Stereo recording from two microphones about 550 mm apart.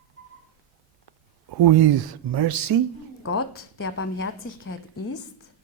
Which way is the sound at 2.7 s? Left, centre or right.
Right.